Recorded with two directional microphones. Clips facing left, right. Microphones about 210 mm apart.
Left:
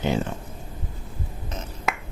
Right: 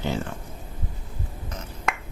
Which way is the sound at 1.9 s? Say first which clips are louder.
Even; 5° left (ahead or behind).